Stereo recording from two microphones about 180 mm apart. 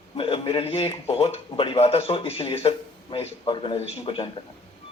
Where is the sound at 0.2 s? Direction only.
30° left (ahead or behind).